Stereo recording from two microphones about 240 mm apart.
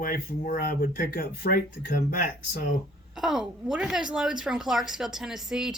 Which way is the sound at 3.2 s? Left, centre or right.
Centre.